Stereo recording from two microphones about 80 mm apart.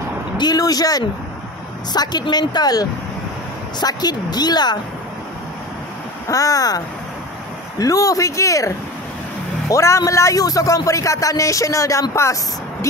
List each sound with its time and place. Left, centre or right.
0.4 s a woman's voice: left
6.2 s speech: left
7.8 s speech: left